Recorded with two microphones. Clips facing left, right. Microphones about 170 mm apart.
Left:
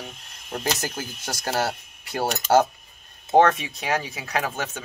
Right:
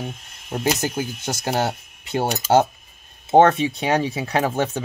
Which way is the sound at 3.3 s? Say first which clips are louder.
Right 4 dB; 25° right (ahead or behind).